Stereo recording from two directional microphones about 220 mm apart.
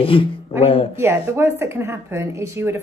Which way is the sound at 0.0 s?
25° left (ahead or behind).